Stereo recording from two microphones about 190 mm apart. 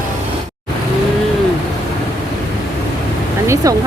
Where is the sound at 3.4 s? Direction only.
15° right (ahead or behind).